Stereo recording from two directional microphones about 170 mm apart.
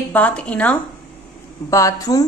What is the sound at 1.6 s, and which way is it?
Speech, 20° left (ahead or behind).